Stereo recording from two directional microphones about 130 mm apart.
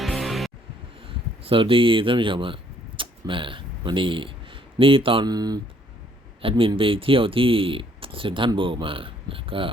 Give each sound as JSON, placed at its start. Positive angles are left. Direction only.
{"t": 0.0, "sound": "music", "side_deg": 0}
{"t": 1.0, "sound": "speech", "side_deg": -45}
{"t": 6.4, "sound": "speech", "side_deg": -45}